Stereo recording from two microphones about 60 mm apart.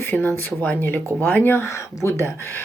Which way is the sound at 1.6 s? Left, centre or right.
Left.